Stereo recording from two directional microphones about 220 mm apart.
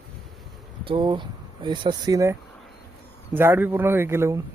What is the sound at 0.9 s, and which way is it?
Speech, 20° right (ahead or behind).